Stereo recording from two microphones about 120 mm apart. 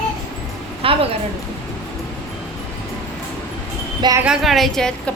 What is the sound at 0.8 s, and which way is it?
Speech, 50° right (ahead or behind).